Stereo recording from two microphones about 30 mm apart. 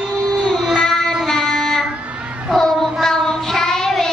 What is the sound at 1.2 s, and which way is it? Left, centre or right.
Music, centre.